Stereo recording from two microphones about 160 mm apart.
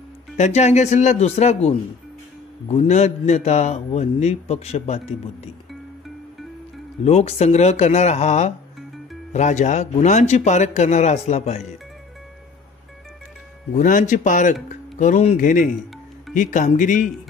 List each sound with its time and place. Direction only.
0.4 s a man's voice: 45° left (ahead or behind)
7.1 s a man's voice: 40° left (ahead or behind)
13.7 s a man's voice: 55° left (ahead or behind)